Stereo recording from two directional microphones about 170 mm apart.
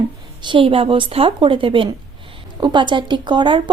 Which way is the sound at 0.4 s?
30° right (ahead or behind).